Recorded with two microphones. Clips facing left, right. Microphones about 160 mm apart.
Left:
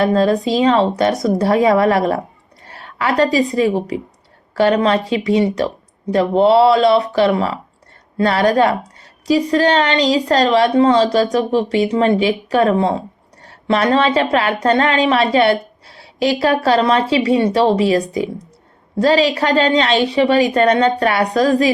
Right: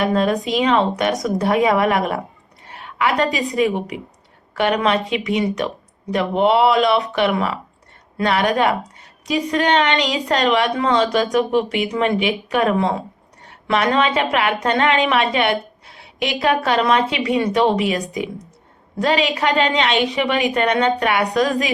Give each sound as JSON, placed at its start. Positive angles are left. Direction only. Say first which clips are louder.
{"t": 0.0, "sound": "a woman's voice", "louder": "left 4 dB", "side_deg": 35}